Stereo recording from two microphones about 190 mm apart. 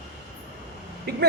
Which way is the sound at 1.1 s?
55° right (ahead or behind).